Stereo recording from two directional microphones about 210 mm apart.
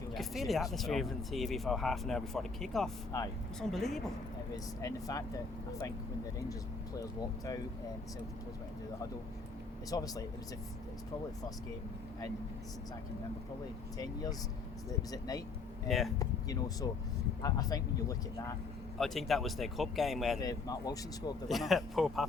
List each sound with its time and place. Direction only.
0.1 s speech: centre (ahead or behind)
3.1 s speech: 15° left (ahead or behind)
3.6 s speech: centre (ahead or behind)
4.5 s speech: 15° left (ahead or behind)
7.0 s speech: 15° left (ahead or behind)
9.9 s speech: 15° left (ahead or behind)
14.8 s speech: 15° left (ahead or behind)
15.9 s speech: centre (ahead or behind)
16.1 s speech: 15° left (ahead or behind)
18.9 s speech: centre (ahead or behind)
20.4 s speech: 20° left (ahead or behind)
21.4 s speech: centre (ahead or behind)